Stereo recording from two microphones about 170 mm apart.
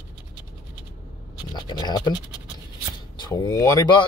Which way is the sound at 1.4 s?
25° left (ahead or behind).